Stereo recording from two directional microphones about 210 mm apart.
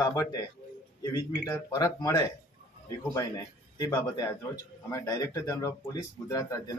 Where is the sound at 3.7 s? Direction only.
15° left (ahead or behind).